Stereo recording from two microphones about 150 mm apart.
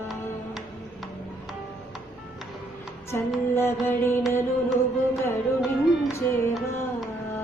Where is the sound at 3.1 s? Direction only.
15° left (ahead or behind).